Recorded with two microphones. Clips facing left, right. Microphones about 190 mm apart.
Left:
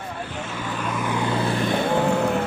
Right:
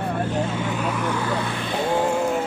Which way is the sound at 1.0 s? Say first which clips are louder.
Right 1 dB; 10° left (ahead or behind).